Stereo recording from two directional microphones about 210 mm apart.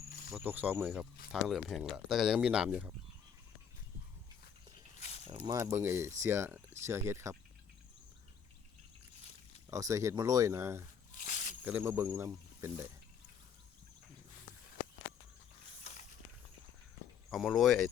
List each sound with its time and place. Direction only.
0.3 s speech: 5° right (ahead or behind)
4.9 s a sound: 30° left (ahead or behind)
5.3 s speech: 20° right (ahead or behind)
9.6 s speech: 15° right (ahead or behind)
11.1 s snake: 40° left (ahead or behind)
11.6 s speech: 10° right (ahead or behind)
15.8 s a sound: 35° left (ahead or behind)
17.3 s speech: centre (ahead or behind)